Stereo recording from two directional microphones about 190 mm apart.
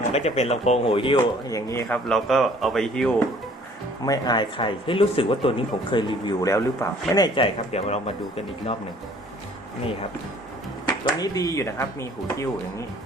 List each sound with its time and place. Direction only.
0.1 s speech: 35° left (ahead or behind)
1.5 s speech: 15° left (ahead or behind)
2.0 s speech: centre (ahead or behind)
4.0 s speech: 20° left (ahead or behind)
10.8 s speech: 20° left (ahead or behind)